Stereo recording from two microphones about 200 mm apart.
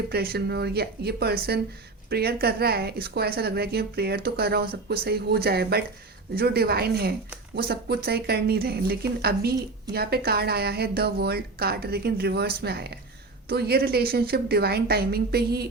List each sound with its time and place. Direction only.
0.1 s a woman's voice: 50° right (ahead or behind)